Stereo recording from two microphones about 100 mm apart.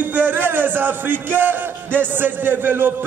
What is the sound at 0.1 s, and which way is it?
Music, 20° right (ahead or behind).